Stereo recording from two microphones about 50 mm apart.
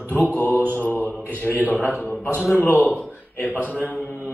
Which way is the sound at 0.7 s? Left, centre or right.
Left.